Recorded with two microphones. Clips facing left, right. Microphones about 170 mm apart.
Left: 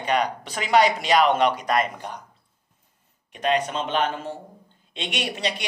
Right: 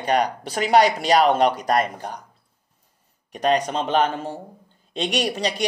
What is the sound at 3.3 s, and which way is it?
Speech, 40° right (ahead or behind).